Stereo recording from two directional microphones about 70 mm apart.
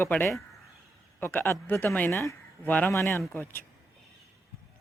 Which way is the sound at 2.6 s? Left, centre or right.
Left.